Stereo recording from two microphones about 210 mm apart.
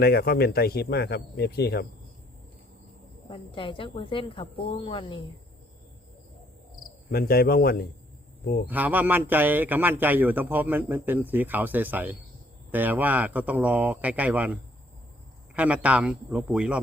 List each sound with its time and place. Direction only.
0.0 s speech: 45° left (ahead or behind)
3.2 s speech: 25° left (ahead or behind)
7.1 s speech: 45° left (ahead or behind)
8.6 s a man's voice: 10° right (ahead or behind)